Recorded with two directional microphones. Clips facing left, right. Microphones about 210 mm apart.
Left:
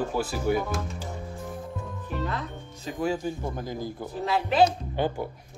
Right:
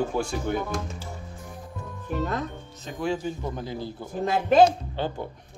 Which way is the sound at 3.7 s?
45° left (ahead or behind).